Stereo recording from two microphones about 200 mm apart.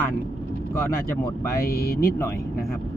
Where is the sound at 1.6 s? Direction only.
50° left (ahead or behind).